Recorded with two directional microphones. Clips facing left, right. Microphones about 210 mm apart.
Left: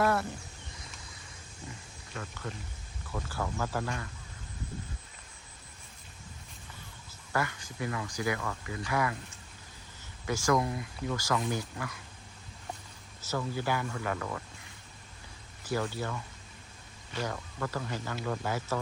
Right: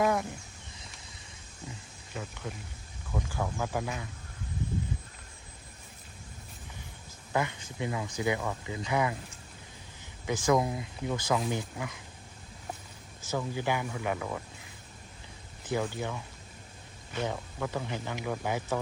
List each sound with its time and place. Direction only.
0.0 s a sound: 15° right (ahead or behind)
2.1 s speech: 10° right (ahead or behind)
7.3 s speech: 20° right (ahead or behind)
10.2 s speech: 20° right (ahead or behind)
13.3 s speech: 15° right (ahead or behind)
15.6 s speech: 15° right (ahead or behind)
17.2 s speech: 15° right (ahead or behind)